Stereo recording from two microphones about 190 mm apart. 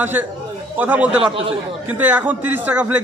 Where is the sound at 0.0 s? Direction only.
10° right (ahead or behind).